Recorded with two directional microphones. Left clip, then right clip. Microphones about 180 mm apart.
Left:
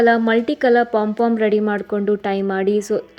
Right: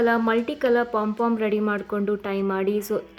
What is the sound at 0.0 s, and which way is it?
Speech, 25° left (ahead or behind).